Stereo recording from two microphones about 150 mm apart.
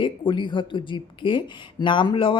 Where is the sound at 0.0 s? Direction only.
30° left (ahead or behind).